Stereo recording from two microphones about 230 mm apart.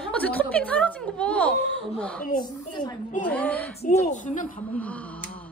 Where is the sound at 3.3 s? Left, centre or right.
Centre.